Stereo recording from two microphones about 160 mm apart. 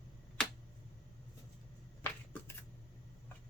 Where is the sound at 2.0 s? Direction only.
15° left (ahead or behind).